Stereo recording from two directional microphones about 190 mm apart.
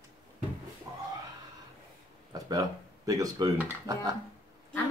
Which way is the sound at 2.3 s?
20° right (ahead or behind).